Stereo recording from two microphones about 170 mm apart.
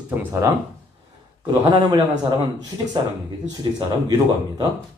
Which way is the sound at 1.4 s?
25° right (ahead or behind).